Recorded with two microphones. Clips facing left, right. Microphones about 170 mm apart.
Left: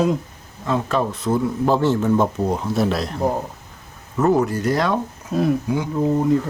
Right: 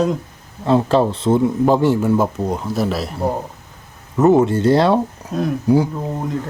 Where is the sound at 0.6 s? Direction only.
30° right (ahead or behind).